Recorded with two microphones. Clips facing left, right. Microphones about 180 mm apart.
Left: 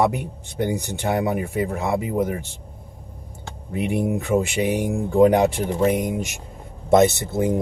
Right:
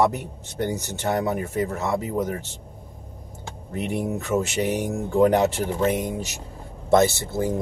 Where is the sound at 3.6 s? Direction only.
10° left (ahead or behind).